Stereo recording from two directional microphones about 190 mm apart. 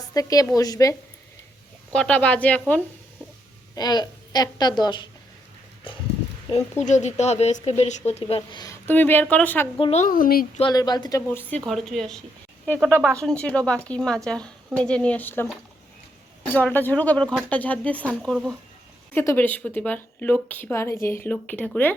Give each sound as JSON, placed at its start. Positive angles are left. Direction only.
{"t": 0.1, "sound": "a woman's voice", "side_deg": 20}
{"t": 1.9, "sound": "a woman's voice", "side_deg": 5}
{"t": 3.8, "sound": "a woman's voice", "side_deg": 20}
{"t": 6.5, "sound": "speech", "side_deg": 35}
{"t": 8.4, "sound": "a woman's voice", "side_deg": 20}
{"t": 9.7, "sound": "speech", "side_deg": 30}
{"t": 10.6, "sound": "a woman's voice", "side_deg": 20}
{"t": 11.3, "sound": "a woman's voice", "side_deg": 10}
{"t": 16.5, "sound": "a woman's voice", "side_deg": 10}
{"t": 19.1, "sound": "a woman's voice", "side_deg": 10}